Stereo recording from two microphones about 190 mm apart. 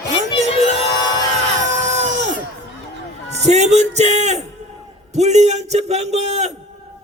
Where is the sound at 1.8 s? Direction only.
40° right (ahead or behind).